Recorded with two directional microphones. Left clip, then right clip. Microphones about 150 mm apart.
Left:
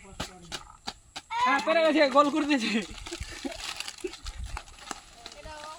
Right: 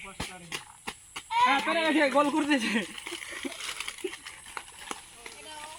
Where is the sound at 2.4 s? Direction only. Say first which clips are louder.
Even; 60° left (ahead or behind).